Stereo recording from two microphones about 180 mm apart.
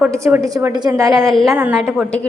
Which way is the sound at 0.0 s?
10° right (ahead or behind).